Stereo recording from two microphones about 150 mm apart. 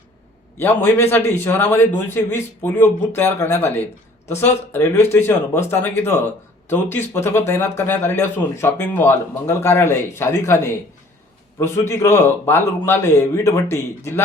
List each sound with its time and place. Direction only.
0.6 s speech: 15° left (ahead or behind)